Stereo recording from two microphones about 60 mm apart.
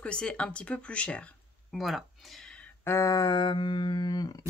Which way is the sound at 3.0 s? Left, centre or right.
Left.